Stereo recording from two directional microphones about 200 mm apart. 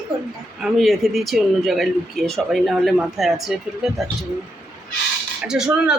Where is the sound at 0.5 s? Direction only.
Centre (ahead or behind).